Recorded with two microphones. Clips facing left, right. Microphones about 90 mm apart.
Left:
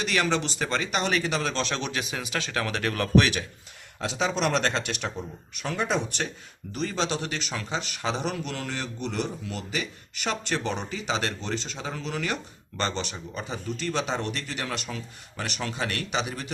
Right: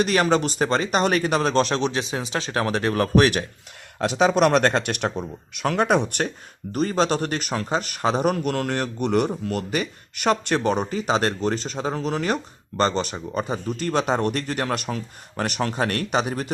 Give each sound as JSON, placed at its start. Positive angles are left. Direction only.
{"t": 0.0, "sound": "speech", "side_deg": -45}
{"t": 4.0, "sound": "speech", "side_deg": -65}
{"t": 6.7, "sound": "speech", "side_deg": -45}